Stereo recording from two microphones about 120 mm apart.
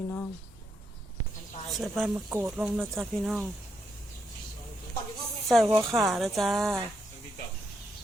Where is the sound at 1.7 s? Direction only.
Centre (ahead or behind).